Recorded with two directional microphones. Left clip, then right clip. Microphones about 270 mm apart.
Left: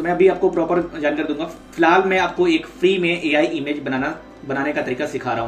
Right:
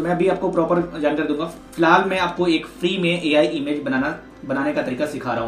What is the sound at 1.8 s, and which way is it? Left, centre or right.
Speech, centre.